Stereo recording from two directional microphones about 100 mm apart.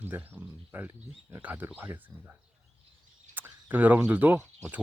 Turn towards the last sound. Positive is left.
turn(degrees=-20)  # may be behind; listen again after turning